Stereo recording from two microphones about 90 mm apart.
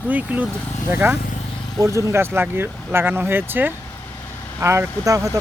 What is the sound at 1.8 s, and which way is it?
Speech, 35° right (ahead or behind).